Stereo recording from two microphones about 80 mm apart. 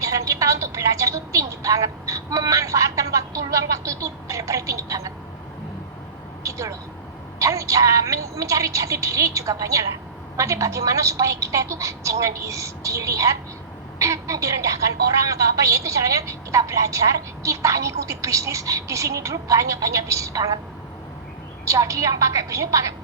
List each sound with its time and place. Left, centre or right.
0.0 s a woman's voice: right
6.4 s a sound: right
7.3 s a woman's voice: right
21.6 s a woman's voice: right